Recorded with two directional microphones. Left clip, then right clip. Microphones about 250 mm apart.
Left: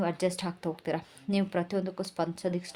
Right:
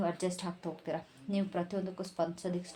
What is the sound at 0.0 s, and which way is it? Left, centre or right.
Speech, left.